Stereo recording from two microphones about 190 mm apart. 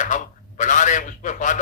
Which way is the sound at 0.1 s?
40° left (ahead or behind).